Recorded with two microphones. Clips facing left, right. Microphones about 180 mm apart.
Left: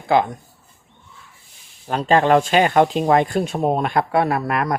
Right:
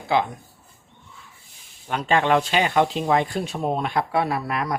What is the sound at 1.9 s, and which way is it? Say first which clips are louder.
Speech: left 5 dB; 35° left (ahead or behind).